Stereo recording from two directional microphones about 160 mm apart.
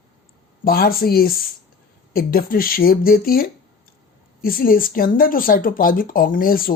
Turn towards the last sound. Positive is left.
turn(degrees=65)  # may be behind; listen again after turning